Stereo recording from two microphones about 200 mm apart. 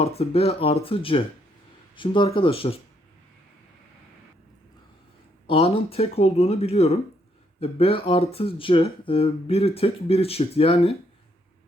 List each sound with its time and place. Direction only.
0.0 s speech: 30° left (ahead or behind)
5.5 s speech: 30° left (ahead or behind)